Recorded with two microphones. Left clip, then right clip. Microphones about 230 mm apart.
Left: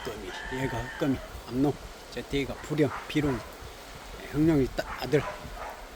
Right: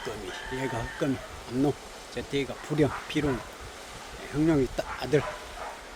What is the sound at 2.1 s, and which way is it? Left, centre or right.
Speech, centre.